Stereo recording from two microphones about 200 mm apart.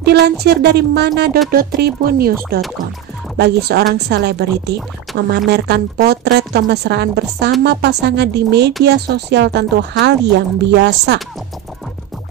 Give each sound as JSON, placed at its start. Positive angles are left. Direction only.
{"t": 0.0, "sound": "a woman's voice", "side_deg": -55}